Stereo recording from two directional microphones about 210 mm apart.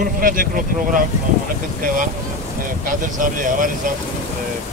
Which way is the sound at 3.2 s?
40° right (ahead or behind).